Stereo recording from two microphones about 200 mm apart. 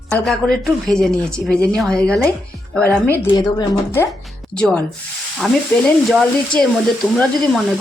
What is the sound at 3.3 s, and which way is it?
Speech, 20° left (ahead or behind).